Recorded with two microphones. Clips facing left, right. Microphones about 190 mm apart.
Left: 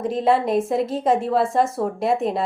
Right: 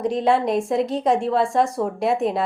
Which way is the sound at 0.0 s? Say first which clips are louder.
Even; centre (ahead or behind).